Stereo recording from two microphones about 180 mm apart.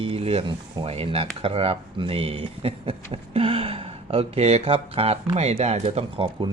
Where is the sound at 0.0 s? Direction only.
30° right (ahead or behind).